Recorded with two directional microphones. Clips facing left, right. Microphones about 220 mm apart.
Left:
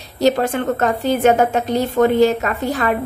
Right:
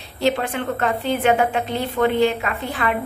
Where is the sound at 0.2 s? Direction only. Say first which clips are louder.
Left 5 dB; 40° left (ahead or behind).